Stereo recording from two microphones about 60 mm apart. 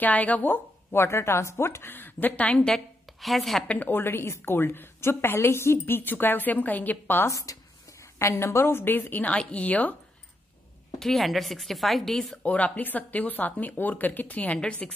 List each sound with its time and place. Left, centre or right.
0.0 s speech: left
0.9 s a woman's voice: left; by 2.8 s centre
3.2 s a woman's voice: centre
3.6 s speech: left
3.9 s a woman's voice: left
7.2 s speech: left
8.2 s a woman's voice: left
9.3 s speech: left
11.0 s a woman's voice: centre
12.4 s a woman's voice: left